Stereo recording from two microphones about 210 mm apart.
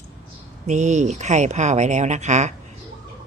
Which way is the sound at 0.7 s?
35° right (ahead or behind).